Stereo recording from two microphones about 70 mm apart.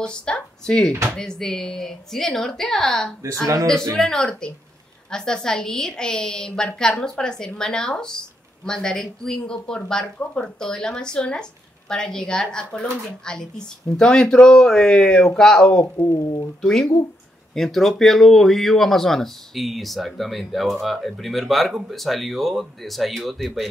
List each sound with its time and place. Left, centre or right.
0.0 s a sound: centre
1.1 s a woman's voice: centre
3.4 s speech: right
3.9 s a woman's voice: centre
16.1 s speech: left
16.6 s a woman's voice: centre